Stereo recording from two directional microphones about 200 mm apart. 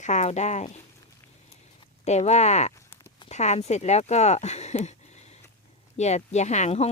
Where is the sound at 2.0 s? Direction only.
35° left (ahead or behind).